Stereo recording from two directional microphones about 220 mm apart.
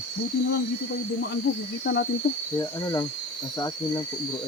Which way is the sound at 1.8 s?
55° left (ahead or behind).